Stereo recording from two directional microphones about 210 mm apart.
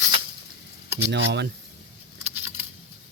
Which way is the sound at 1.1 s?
55° right (ahead or behind).